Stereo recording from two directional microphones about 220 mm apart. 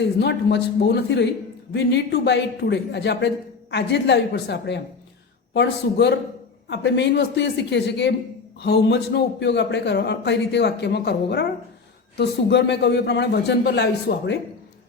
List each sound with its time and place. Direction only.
0.2 s a man's voice: 50° left (ahead or behind)